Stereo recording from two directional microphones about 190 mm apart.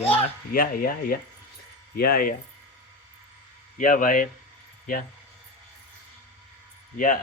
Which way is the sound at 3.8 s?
45° left (ahead or behind).